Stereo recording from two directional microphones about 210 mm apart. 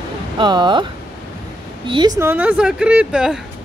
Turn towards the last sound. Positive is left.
turn(degrees=-5)  # may be behind; listen again after turning